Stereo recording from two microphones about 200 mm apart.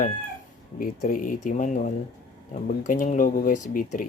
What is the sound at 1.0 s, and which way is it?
Speech, 45° left (ahead or behind).